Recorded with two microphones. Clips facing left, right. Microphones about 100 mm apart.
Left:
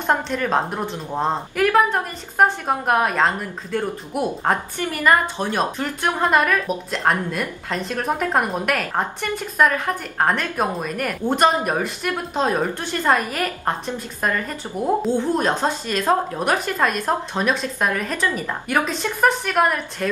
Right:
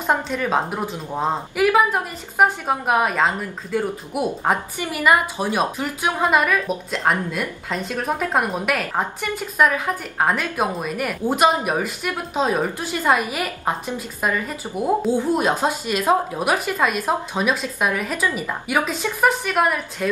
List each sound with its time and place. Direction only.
0.0 s a woman's voice: 5° right (ahead or behind)